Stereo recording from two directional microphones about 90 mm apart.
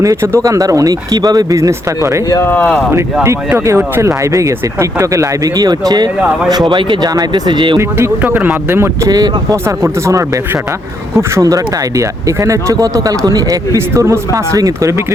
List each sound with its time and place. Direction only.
0.0 s speech: 40° right (ahead or behind)
2.4 s speech: 20° left (ahead or behind)
3.7 s speech: 30° right (ahead or behind); by 6.1 s 50° right (ahead or behind)
6.7 s speech: 60° right (ahead or behind)
7.1 s speech: 45° right (ahead or behind)
7.8 s speech: 30° right (ahead or behind)
8.2 s speech: 20° right (ahead or behind)
9.0 s speech: 45° right (ahead or behind)
9.6 s speech: 30° right (ahead or behind)
13.7 s speech: 30° right (ahead or behind)